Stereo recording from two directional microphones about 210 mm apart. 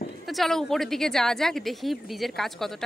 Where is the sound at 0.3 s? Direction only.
Centre (ahead or behind).